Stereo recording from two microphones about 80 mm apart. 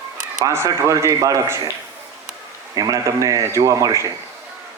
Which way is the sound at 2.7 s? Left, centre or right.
Right.